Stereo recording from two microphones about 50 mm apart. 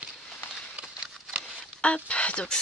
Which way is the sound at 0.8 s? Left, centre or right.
Right.